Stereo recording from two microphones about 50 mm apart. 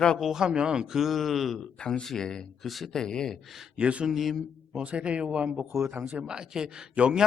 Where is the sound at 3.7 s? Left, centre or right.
Right.